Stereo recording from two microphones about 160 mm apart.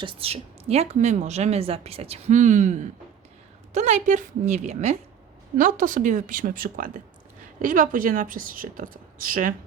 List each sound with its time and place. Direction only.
0.0 s a woman's voice: 35° right (ahead or behind); by 9.6 s 60° right (ahead or behind)